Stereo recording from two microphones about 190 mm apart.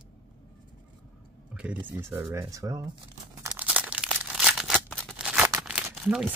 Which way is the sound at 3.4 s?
10° right (ahead or behind).